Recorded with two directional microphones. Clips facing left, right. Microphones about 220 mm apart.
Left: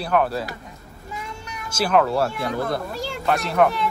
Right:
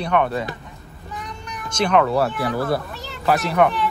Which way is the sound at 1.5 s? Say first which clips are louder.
Right 1 dB; 5° left (ahead or behind).